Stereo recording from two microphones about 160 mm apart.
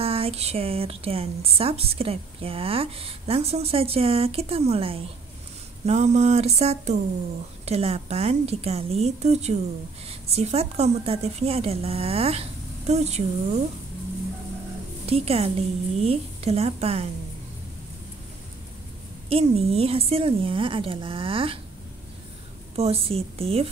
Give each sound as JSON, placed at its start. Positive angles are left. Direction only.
{"t": 0.0, "sound": "speech", "side_deg": -35}
{"t": 5.9, "sound": "a sound", "side_deg": -45}
{"t": 7.6, "sound": "speech", "side_deg": -40}
{"t": 15.0, "sound": "speech", "side_deg": -40}
{"t": 19.2, "sound": "speech", "side_deg": -40}
{"t": 22.8, "sound": "speech", "side_deg": -35}